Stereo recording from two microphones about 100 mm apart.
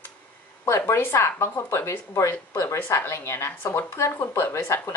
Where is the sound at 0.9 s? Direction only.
25° left (ahead or behind).